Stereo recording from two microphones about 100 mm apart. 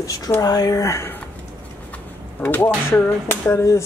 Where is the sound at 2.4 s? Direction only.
20° left (ahead or behind).